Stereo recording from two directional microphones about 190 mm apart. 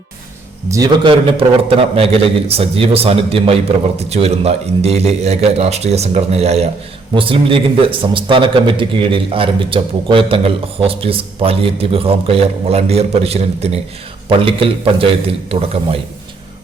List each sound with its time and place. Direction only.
0.7 s a man's voice: 20° right (ahead or behind)